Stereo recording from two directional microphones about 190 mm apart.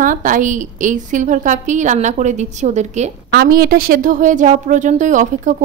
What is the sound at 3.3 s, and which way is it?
A woman's voice, 55° right (ahead or behind).